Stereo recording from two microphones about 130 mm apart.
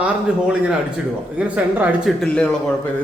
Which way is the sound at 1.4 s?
10° right (ahead or behind).